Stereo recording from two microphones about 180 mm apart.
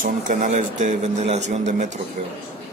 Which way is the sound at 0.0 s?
45° right (ahead or behind).